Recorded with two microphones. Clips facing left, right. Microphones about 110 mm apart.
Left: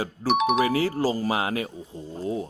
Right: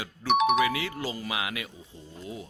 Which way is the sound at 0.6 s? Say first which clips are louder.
Left 5 dB; 40° left (ahead or behind).